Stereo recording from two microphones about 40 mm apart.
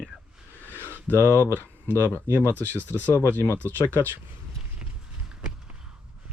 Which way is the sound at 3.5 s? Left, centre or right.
Left.